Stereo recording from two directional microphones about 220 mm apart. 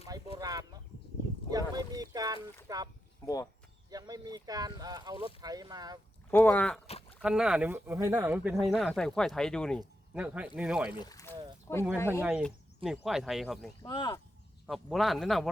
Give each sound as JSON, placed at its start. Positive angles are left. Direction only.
{"t": 0.3, "sound": "chicken", "side_deg": -15}
{"t": 1.5, "sound": "boat", "side_deg": -15}
{"t": 2.6, "sound": "speech", "side_deg": -15}
{"t": 3.2, "sound": "speech", "side_deg": 15}
{"t": 3.8, "sound": "speech", "side_deg": -15}
{"t": 6.3, "sound": "speech", "side_deg": 5}
{"t": 10.9, "sound": "speech", "side_deg": 15}
{"t": 13.8, "sound": "speech", "side_deg": 20}
{"t": 14.7, "sound": "speech", "side_deg": 0}